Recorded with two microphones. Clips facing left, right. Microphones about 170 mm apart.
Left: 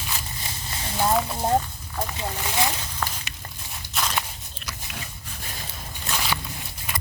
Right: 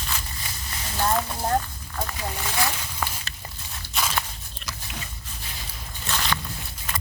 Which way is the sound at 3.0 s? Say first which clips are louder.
Even; 10° right (ahead or behind).